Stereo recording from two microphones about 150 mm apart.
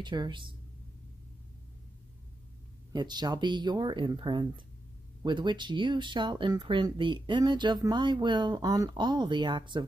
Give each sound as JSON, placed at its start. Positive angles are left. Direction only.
{"t": 0.0, "sound": "speech", "side_deg": -30}
{"t": 2.9, "sound": "speech", "side_deg": -30}